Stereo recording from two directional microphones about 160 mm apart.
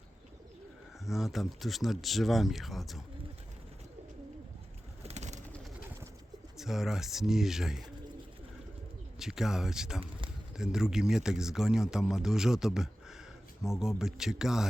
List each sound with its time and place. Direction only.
1.0 s speech: centre (ahead or behind)
5.0 s bird: 45° right (ahead or behind)
6.6 s speech: centre (ahead or behind)
9.1 s speech: centre (ahead or behind)